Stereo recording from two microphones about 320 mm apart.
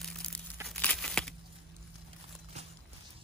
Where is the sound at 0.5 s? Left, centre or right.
Centre.